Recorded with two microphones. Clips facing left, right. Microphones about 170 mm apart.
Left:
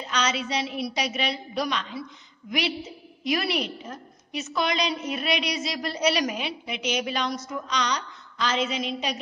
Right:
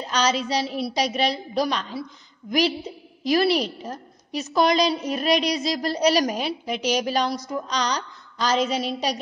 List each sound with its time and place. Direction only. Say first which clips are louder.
0.0 s a woman's voice: right 4 dB; 35° right (ahead or behind)
3.3 s a woman's voice: right 6 dB; 35° right (ahead or behind)